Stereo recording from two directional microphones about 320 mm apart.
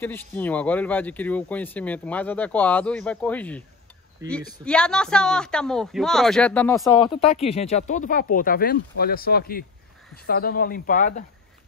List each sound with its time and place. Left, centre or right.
0.0 s speech: centre
4.2 s speech: centre
4.6 s speech: centre
7.4 s speech: centre